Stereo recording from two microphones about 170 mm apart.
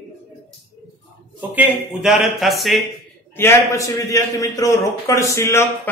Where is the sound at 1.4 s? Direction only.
10° right (ahead or behind).